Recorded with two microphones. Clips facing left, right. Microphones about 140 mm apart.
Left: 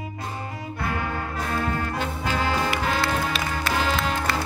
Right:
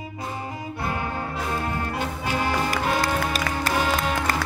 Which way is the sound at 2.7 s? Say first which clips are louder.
Right 1 dB; 40° right (ahead or behind).